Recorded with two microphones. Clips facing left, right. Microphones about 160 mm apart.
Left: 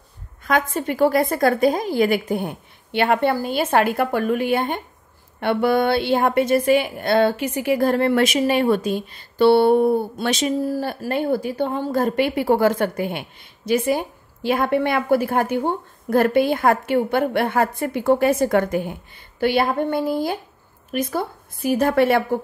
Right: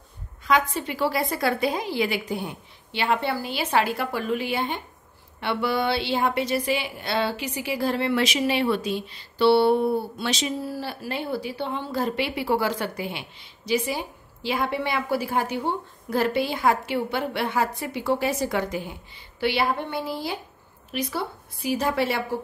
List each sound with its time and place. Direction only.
0.4 s a woman's voice: 50° left (ahead or behind)